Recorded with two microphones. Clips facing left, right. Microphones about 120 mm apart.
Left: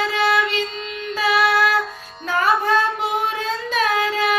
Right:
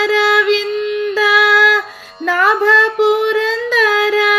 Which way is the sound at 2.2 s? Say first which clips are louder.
Right 5 dB; 90° right.